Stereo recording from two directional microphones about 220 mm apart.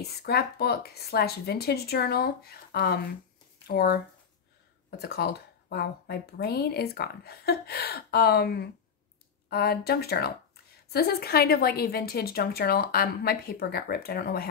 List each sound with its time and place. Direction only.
0.2 s a woman's voice: 45° left (ahead or behind)